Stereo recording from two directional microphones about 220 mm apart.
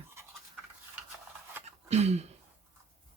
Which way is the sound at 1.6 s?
30° right (ahead or behind).